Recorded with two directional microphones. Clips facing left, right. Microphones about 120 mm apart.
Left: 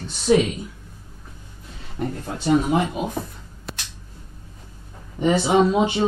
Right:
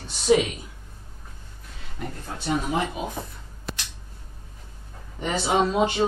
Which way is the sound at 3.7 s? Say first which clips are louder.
Right 1 dB; centre (ahead or behind).